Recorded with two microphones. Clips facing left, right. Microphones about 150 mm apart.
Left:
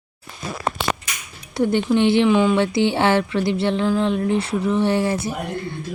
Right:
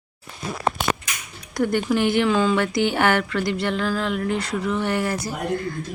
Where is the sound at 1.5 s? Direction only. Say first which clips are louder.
Left 3 dB; 25° left (ahead or behind).